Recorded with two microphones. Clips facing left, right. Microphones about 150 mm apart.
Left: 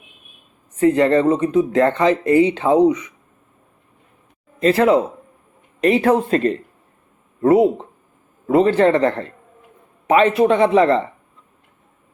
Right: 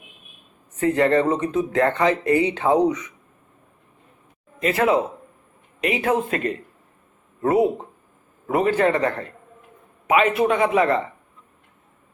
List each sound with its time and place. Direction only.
0.8 s speech: 20° left (ahead or behind)
4.6 s speech: 30° left (ahead or behind)